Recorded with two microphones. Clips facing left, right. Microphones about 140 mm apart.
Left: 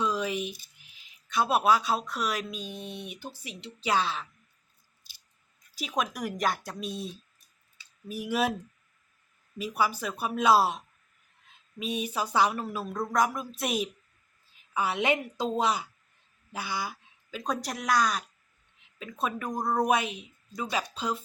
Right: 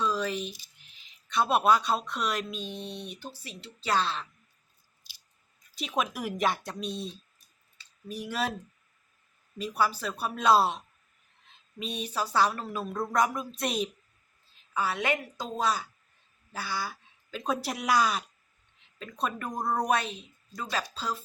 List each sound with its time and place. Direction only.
0.0 s a sound: 15° left (ahead or behind)
0.9 s speech: 5° left (ahead or behind)
5.7 s speech: centre (ahead or behind)
9.6 s speech: 10° left (ahead or behind)
12.8 s speech: centre (ahead or behind)
14.7 s a woman's voice: 20° left (ahead or behind)
17.3 s speech: 5° right (ahead or behind)
19.9 s speech: 10° left (ahead or behind)